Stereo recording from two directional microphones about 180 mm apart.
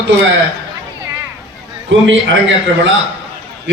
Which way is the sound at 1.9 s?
90° right.